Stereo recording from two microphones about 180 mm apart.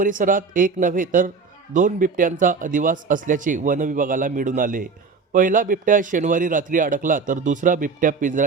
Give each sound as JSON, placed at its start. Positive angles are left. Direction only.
{"t": 0.0, "sound": "a man's voice", "side_deg": -50}